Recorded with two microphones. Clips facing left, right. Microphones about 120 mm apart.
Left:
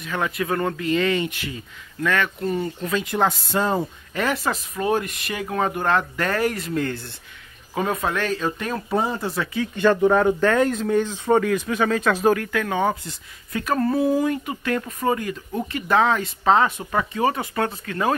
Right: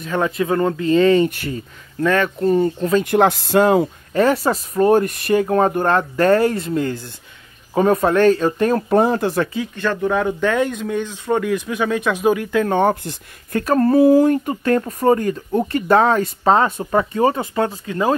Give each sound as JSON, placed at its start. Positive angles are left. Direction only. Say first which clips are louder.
{"t": 0.0, "sound": "speech", "louder": "right 6 dB", "side_deg": -30}
{"t": 3.0, "sound": "speech", "louder": "right 6 dB", "side_deg": -65}
{"t": 4.1, "sound": "speech", "louder": "right 8 dB", "side_deg": -35}
{"t": 7.7, "sound": "speech", "louder": "right 9 dB", "side_deg": -40}
{"t": 9.0, "sound": "speech", "louder": "right 8 dB", "side_deg": -65}
{"t": 9.8, "sound": "speech", "louder": "left 3 dB", "side_deg": 10}
{"t": 11.4, "sound": "speech", "louder": "right 1 dB", "side_deg": -10}
{"t": 12.4, "sound": "speech", "louder": "right 6 dB", "side_deg": -20}
{"t": 12.7, "sound": "speech", "louder": "right 6 dB", "side_deg": -60}
{"t": 14.4, "sound": "speech", "louder": "right 7 dB", "side_deg": -40}